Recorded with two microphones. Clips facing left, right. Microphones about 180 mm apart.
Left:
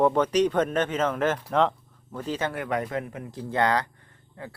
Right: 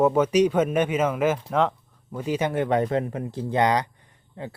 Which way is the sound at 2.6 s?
30° right (ahead or behind).